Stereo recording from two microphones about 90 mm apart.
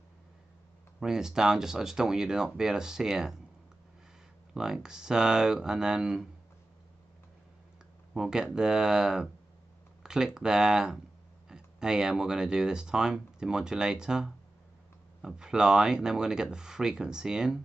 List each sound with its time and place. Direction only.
0.9 s speech: 5° right (ahead or behind)
4.6 s speech: 5° right (ahead or behind)
8.1 s speech: 5° right (ahead or behind)